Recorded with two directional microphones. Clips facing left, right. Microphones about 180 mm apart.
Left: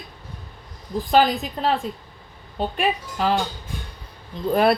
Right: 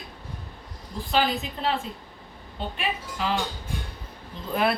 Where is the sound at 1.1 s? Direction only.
40° left (ahead or behind).